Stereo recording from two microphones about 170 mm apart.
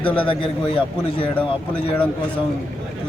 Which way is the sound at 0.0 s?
10° left (ahead or behind).